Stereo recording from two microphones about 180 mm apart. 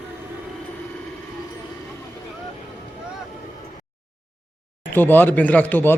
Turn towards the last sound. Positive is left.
turn(degrees=10)  # may be behind; listen again after turning